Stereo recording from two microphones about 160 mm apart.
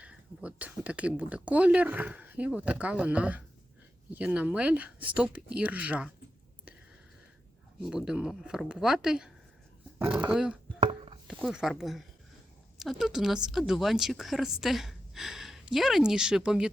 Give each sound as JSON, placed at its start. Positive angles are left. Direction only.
{"t": 0.0, "sound": "speech", "side_deg": -10}
{"t": 7.8, "sound": "speech", "side_deg": -5}
{"t": 10.8, "sound": "a sound", "side_deg": -35}
{"t": 11.3, "sound": "speech", "side_deg": 0}